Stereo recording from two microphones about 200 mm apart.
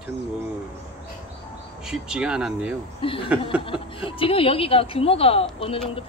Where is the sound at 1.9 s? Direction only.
5° right (ahead or behind).